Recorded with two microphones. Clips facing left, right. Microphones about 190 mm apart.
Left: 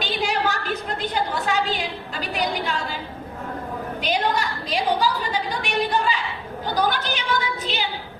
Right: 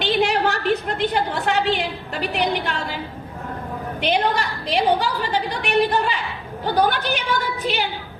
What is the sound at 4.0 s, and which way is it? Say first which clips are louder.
A woman's voice: right 3 dB; 60° right (ahead or behind).